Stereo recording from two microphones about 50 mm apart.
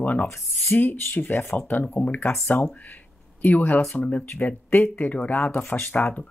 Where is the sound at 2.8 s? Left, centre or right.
Left.